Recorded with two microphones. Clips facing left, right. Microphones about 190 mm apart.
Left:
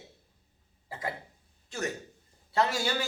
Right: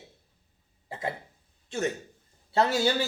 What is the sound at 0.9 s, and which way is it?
Speech, 20° right (ahead or behind).